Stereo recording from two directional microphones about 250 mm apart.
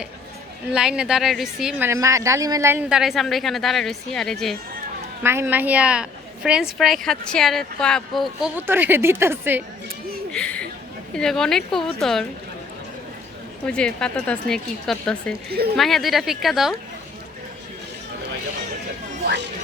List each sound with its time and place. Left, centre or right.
0.7 s a woman's voice: centre
5.2 s a woman's voice: centre
10.3 s a woman's voice: centre
13.7 s a woman's voice: centre
15.4 s speech: right
15.7 s a woman's voice: centre